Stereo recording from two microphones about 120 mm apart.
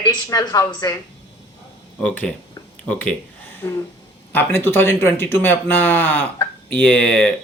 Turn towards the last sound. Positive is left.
turn(degrees=15)  # may be behind; listen again after turning